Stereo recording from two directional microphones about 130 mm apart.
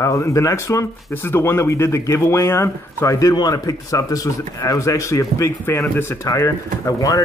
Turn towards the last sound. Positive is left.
turn(degrees=25)  # may be behind; listen again after turning